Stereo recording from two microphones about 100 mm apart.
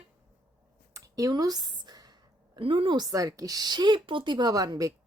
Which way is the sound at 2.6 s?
60° right (ahead or behind).